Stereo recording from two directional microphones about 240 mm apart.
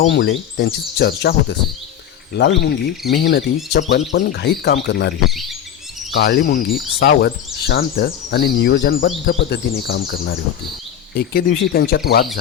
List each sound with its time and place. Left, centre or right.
0.0 s speech: left
5.2 s chirp: centre
6.1 s speech: left
11.1 s speech: left